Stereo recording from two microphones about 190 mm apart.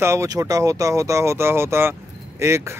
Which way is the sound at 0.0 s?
15° right (ahead or behind).